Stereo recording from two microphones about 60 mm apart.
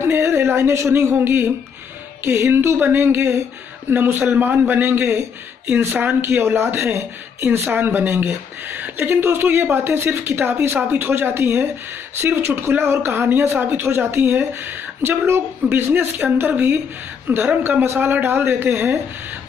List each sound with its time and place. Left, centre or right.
0.0 s speech: right
7.4 s a woman's voice: right